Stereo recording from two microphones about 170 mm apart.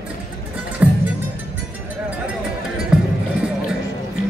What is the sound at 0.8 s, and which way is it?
Music, 10° right (ahead or behind).